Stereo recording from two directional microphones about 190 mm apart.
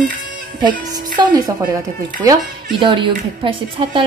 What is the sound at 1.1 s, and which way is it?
Speech, 20° right (ahead or behind).